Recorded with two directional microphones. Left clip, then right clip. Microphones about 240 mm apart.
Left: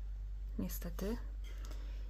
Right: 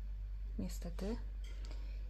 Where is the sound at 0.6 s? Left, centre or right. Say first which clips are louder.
Left 2 dB; centre.